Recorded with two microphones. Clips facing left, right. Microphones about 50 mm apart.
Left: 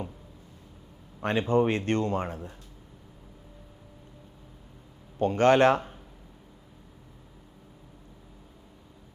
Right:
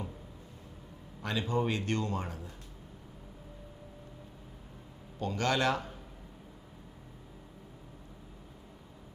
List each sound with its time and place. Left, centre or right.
1.2 s a man's voice: left
5.2 s a man's voice: left